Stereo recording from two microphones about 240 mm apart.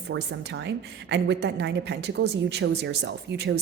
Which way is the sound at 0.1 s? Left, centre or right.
Right.